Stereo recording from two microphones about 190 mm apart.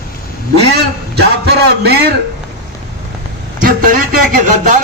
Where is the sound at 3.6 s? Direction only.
45° right (ahead or behind).